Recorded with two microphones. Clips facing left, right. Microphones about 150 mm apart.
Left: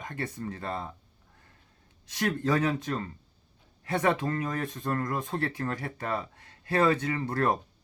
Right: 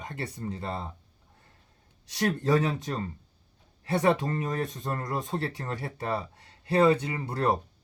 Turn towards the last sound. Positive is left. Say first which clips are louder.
# left 2 dB
turn(degrees=-15)  # may be behind; listen again after turning